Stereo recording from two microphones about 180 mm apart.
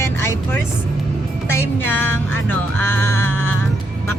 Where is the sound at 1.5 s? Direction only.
15° left (ahead or behind).